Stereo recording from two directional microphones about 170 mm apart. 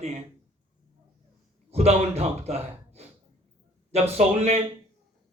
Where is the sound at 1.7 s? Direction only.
40° right (ahead or behind).